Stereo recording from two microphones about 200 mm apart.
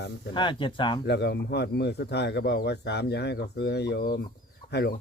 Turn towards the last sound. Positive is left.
turn(degrees=55)  # may be behind; listen again after turning